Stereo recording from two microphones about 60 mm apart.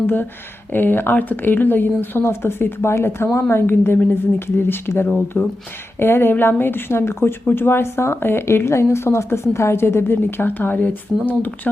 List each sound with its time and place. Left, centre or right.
0.7 s speech: left